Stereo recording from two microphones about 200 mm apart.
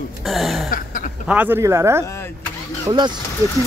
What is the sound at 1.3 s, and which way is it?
Speech, 10° right (ahead or behind).